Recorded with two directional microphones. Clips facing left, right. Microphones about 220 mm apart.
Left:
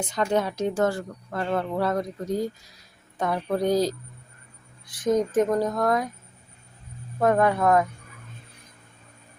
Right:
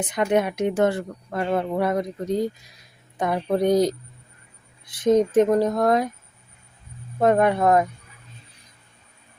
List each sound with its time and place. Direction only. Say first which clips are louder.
0.0 s speech: right 3 dB; 20° right (ahead or behind)
5.0 s speech: right 4 dB; 25° right (ahead or behind)
7.2 s speech: right 2 dB; 20° right (ahead or behind)